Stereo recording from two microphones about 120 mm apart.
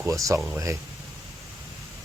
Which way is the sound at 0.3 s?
10° right (ahead or behind).